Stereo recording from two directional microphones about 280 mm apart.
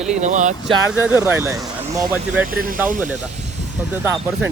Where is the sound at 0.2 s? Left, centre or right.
Right.